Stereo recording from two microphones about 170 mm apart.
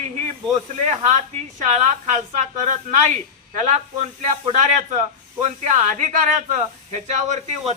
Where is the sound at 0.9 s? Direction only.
45° right (ahead or behind).